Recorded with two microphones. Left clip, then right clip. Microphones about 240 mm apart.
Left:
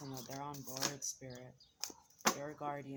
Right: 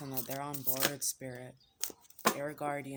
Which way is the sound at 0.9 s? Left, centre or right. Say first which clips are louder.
Right 6 dB; right.